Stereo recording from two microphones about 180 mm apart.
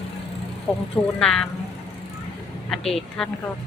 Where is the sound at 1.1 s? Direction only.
5° left (ahead or behind).